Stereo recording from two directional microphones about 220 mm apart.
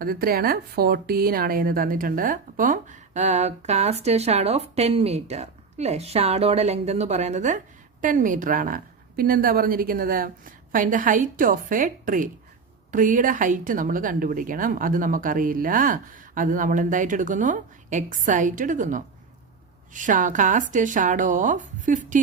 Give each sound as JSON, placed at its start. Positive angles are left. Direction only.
{"t": 0.0, "sound": "a woman's voice", "side_deg": -40}